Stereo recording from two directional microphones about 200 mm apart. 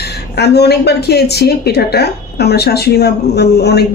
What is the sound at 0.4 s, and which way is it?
Speech, 55° left (ahead or behind).